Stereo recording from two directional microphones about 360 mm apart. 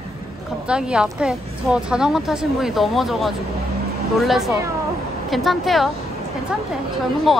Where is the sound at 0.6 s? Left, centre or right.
Centre.